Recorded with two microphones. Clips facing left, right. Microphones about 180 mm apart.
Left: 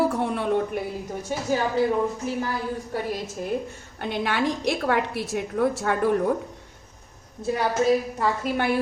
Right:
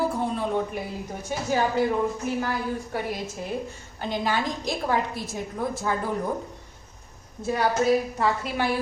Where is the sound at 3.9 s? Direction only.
65° left (ahead or behind).